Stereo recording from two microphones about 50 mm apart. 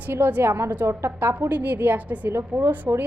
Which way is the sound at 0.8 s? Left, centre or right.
Right.